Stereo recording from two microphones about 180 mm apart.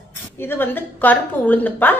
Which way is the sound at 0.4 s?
10° left (ahead or behind).